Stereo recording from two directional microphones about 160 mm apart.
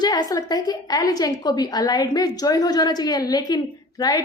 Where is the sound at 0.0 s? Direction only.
25° left (ahead or behind).